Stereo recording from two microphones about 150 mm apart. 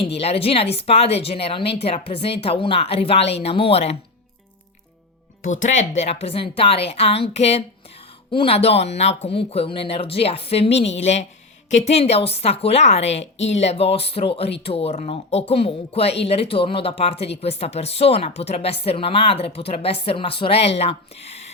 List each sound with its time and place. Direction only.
0.0 s a woman's voice: 40° left (ahead or behind)
5.4 s a woman's voice: 55° left (ahead or behind)